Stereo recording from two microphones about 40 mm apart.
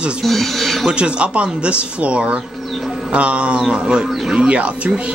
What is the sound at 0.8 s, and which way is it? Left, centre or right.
Speech, right.